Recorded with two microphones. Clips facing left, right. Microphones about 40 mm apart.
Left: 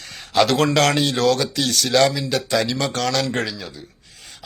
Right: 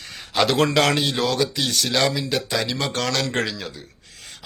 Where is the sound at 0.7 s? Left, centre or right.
Centre; by 3.3 s right.